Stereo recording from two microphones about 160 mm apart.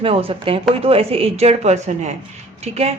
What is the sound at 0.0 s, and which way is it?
A woman's voice, 35° right (ahead or behind).